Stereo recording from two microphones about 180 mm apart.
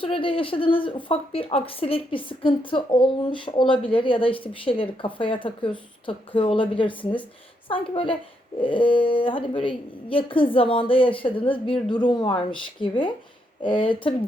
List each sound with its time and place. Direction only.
0.0 s a woman's voice: 30° left (ahead or behind)